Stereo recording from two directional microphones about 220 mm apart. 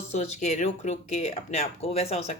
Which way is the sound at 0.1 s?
30° left (ahead or behind).